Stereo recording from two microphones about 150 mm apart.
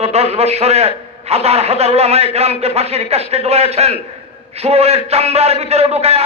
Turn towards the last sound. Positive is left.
turn(degrees=-45)  # may be behind; listen again after turning